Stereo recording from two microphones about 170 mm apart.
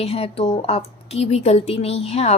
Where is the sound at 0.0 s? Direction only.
35° left (ahead or behind).